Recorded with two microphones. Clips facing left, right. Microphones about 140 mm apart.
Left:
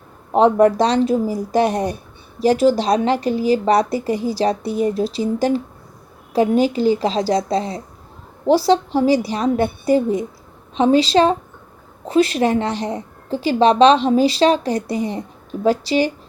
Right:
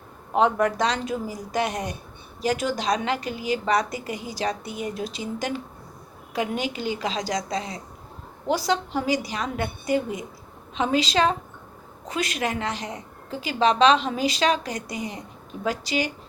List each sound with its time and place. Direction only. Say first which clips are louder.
0.3 s a woman's voice: left 8 dB; 35° left (ahead or behind)